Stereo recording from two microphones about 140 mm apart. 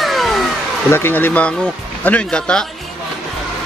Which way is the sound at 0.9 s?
15° left (ahead or behind).